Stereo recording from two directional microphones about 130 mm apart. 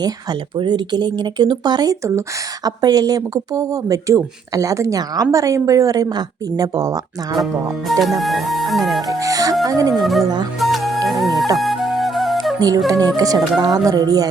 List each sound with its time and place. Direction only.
0.0 s speech: 35° right (ahead or behind)
7.4 s speech: centre (ahead or behind)
9.1 s music: 25° right (ahead or behind)
9.6 s speech: 30° right (ahead or behind)
9.9 s speech: centre (ahead or behind)
10.6 s music: centre (ahead or behind)
12.5 s music: 30° right (ahead or behind)
12.9 s speech: 30° right (ahead or behind)